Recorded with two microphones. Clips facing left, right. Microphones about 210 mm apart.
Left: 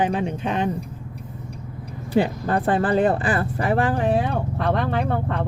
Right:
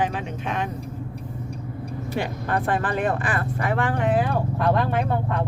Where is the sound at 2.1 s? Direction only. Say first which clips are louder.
Left 6 dB; 30° left (ahead or behind).